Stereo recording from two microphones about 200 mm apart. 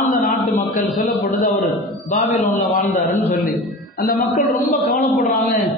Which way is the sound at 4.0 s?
45° left (ahead or behind).